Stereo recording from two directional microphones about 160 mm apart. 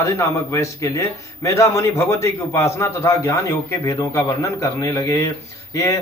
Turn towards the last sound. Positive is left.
turn(degrees=20)  # may be behind; listen again after turning